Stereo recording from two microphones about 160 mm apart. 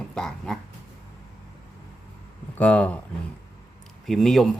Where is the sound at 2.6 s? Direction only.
5° left (ahead or behind).